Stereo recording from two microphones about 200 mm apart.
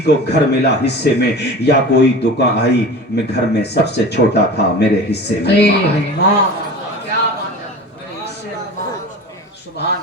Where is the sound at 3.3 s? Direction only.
55° left (ahead or behind).